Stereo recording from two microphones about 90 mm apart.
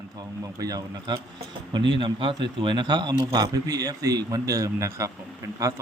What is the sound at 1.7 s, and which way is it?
A man's voice, 70° right (ahead or behind).